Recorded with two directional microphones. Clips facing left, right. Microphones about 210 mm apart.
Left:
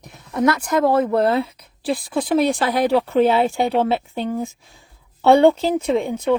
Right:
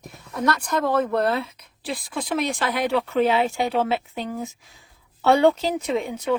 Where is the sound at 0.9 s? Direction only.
30° left (ahead or behind).